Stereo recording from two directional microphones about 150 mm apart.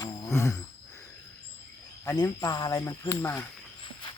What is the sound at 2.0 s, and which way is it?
Speech, 25° left (ahead or behind).